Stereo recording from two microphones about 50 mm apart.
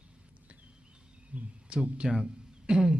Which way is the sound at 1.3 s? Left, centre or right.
Right.